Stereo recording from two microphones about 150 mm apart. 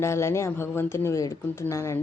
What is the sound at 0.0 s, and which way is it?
Speech, 15° left (ahead or behind).